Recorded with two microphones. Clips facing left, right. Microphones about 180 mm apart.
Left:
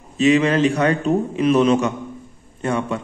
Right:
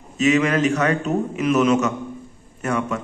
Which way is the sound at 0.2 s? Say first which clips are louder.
Left 2 dB; 30° left (ahead or behind).